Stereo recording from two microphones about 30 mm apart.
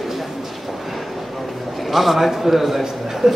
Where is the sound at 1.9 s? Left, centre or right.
Centre.